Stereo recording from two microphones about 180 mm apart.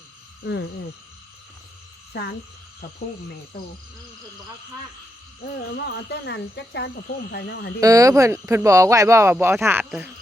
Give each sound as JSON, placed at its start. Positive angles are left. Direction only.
{"t": 2.1, "sound": "speech", "side_deg": 65}
{"t": 5.7, "sound": "speech", "side_deg": 65}
{"t": 7.8, "sound": "speech", "side_deg": -20}